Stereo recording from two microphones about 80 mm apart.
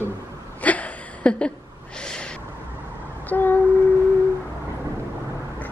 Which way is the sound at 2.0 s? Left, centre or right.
Centre.